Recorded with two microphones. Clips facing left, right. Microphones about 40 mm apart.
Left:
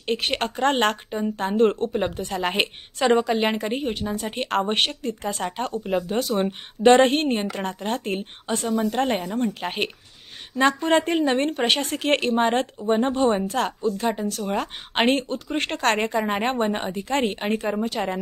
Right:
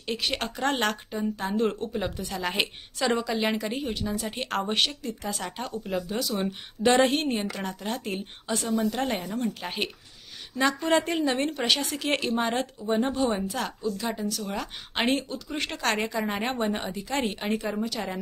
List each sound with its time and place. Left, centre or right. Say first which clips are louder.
0.0 s a woman's voice: left 5 dB; left
16.3 s a woman's voice: left 5 dB; left